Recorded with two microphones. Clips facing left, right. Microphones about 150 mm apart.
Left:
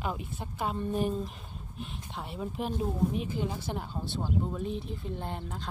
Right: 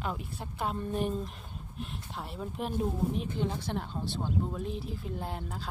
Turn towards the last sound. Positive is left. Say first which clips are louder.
# even
turn(degrees=-5)  # may be behind; listen again after turning